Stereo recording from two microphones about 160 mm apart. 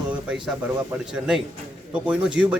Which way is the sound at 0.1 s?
5° right (ahead or behind).